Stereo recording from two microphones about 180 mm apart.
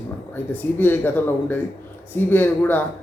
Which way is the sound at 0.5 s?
10° left (ahead or behind).